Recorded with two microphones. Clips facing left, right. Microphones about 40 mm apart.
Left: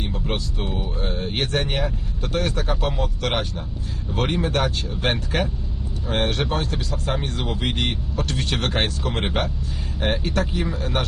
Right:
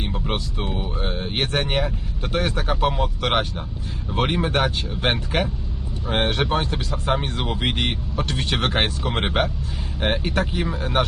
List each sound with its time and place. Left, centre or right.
0.0 s a sound: centre
0.7 s speech: centre
7.3 s speech: centre